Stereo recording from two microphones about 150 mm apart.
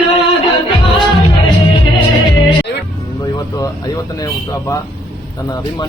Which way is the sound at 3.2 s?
25° left (ahead or behind).